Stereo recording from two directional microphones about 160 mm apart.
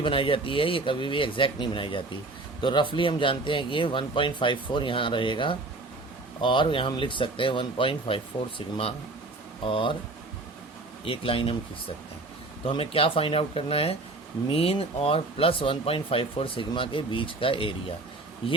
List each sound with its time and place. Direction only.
0.0 s speech: 35° left (ahead or behind)
11.0 s speech: 35° left (ahead or behind)
12.6 s speech: 35° left (ahead or behind)